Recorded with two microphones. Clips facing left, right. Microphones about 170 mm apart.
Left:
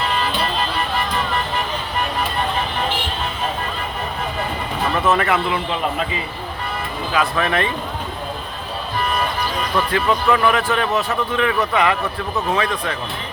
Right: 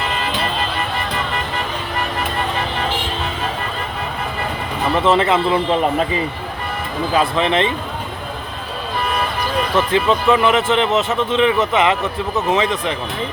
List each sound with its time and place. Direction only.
4.9 s a man's voice: 25° right (ahead or behind)
7.1 s a man's voice: 25° right (ahead or behind)
9.7 s a man's voice: 25° right (ahead or behind)